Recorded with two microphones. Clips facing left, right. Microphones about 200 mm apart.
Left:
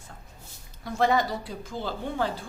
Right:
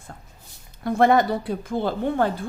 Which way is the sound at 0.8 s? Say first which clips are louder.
Right 6 dB; 55° right (ahead or behind).